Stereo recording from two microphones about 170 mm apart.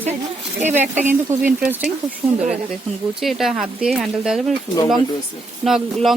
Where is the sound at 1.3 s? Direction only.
45° right (ahead or behind).